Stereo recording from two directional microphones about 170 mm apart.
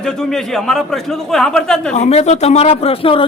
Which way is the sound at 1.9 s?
40° left (ahead or behind).